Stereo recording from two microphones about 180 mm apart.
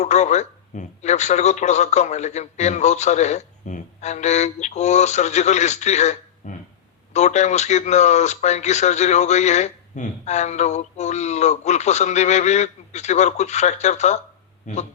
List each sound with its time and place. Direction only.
0.0 s a man's voice: 40° left (ahead or behind)